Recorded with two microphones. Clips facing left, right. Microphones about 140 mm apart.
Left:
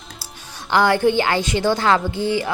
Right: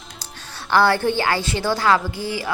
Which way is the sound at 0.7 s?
15° left (ahead or behind).